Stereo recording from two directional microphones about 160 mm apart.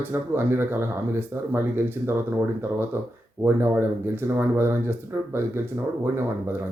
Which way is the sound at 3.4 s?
15° right (ahead or behind).